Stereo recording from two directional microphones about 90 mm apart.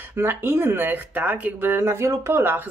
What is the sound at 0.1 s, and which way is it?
Speech, 25° right (ahead or behind).